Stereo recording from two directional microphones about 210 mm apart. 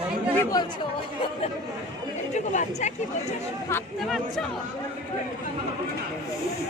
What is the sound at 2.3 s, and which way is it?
Chatter, 35° left (ahead or behind).